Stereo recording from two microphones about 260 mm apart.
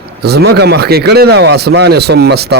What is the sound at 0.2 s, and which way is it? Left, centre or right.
Speech, right.